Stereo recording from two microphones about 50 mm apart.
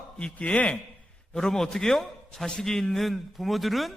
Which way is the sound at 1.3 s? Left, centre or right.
Centre.